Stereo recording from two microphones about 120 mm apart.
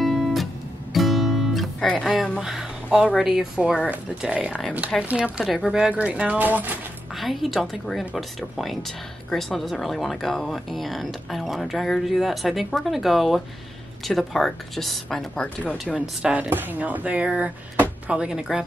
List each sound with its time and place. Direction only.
0.0 s music: centre (ahead or behind)
2.4 s a sound: 5° right (ahead or behind)
3.2 s speech: 5° right (ahead or behind)
4.9 s speech: 5° left (ahead or behind); by 6.7 s 15° right (ahead or behind)
7.2 s speech: centre (ahead or behind)
15.8 s speech: 5° right (ahead or behind)